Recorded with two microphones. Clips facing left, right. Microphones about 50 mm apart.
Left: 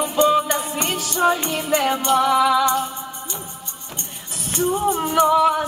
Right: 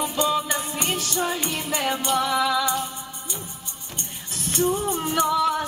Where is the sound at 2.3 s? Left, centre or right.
Left.